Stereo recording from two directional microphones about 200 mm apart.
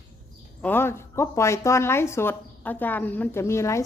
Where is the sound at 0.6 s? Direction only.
10° left (ahead or behind).